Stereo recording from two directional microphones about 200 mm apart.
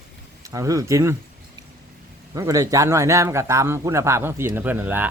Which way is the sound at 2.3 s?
15° right (ahead or behind).